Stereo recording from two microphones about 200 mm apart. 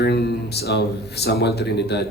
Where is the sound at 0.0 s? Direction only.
55° left (ahead or behind).